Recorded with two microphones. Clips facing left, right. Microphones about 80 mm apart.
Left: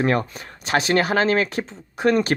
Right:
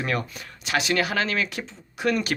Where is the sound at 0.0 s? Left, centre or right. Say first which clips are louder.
Left 7 dB; left.